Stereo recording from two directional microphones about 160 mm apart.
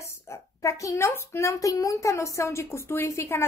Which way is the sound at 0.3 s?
20° left (ahead or behind).